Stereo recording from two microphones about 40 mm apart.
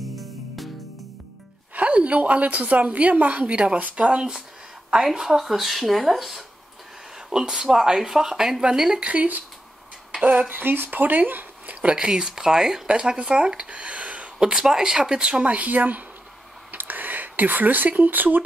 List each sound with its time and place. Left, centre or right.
0.0 s music: centre
1.8 s a woman's voice: right
5.4 s a woman's voice: centre
9.0 s a woman's voice: right
10.5 s speech: right
11.6 s a sound: right
12.1 s a woman's voice: centre; by 14.3 s right
14.4 s a woman's voice: centre
15.4 s a woman's voice: right